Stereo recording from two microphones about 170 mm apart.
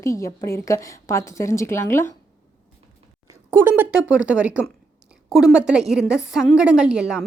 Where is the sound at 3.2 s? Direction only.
15° right (ahead or behind).